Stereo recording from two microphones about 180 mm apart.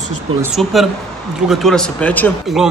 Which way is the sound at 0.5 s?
Centre (ahead or behind).